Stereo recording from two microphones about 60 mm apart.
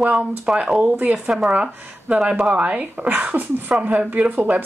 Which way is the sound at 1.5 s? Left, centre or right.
Centre.